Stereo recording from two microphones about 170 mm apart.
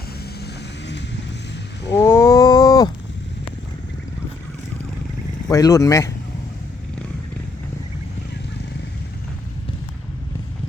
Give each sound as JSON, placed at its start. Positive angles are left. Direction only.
{"t": 0.3, "sound": "vehicle", "side_deg": 80}
{"t": 1.9, "sound": "cat", "side_deg": 15}
{"t": 5.5, "sound": "speech", "side_deg": 20}